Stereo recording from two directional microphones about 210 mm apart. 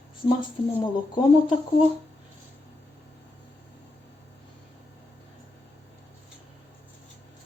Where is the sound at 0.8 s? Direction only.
20° left (ahead or behind).